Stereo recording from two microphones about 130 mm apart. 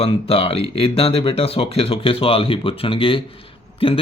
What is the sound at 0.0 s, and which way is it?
Speech, 45° left (ahead or behind).